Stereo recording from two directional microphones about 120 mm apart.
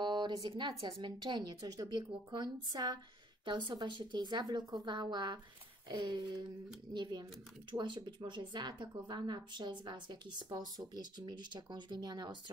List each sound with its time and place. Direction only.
0.0 s a woman's voice: 40° right (ahead or behind)